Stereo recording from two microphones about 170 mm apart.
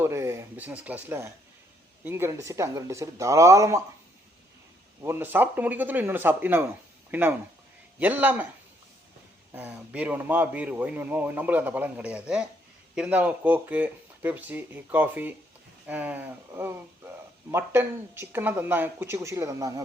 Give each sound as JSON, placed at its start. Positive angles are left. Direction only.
{"t": 0.0, "sound": "a man's voice", "side_deg": -15}
{"t": 5.0, "sound": "a man's voice", "side_deg": -10}
{"t": 9.5, "sound": "a man's voice", "side_deg": -10}